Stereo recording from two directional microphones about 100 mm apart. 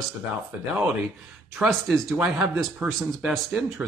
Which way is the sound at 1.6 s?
Centre (ahead or behind).